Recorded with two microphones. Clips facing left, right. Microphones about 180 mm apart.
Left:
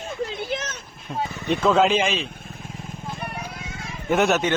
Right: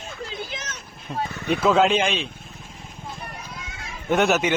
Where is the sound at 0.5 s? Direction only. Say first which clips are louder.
Left 8 dB; 55° left (ahead or behind).